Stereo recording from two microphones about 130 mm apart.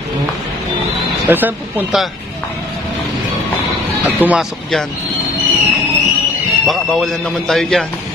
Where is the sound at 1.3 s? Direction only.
15° right (ahead or behind).